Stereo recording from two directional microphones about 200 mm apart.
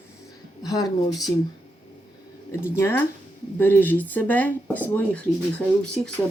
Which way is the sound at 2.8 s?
10° left (ahead or behind).